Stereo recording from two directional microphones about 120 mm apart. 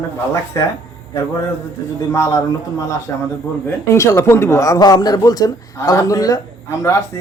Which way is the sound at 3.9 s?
25° left (ahead or behind).